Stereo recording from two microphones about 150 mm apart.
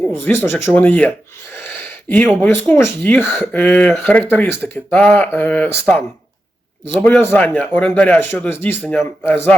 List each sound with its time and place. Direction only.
0.1 s speech: 15° left (ahead or behind)